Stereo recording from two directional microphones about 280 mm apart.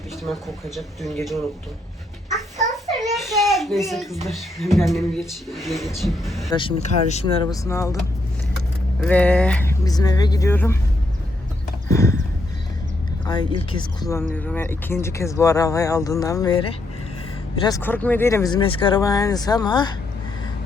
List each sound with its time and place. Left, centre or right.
0.8 s speech: centre
2.3 s a sound: centre
3.2 s speech: centre
6.5 s speech: centre
7.5 s speech: centre
9.0 s speech: centre
11.9 s horse: centre
13.7 s speech: centre